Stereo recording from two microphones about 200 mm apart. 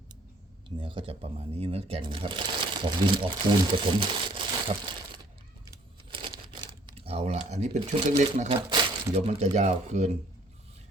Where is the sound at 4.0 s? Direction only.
25° right (ahead or behind).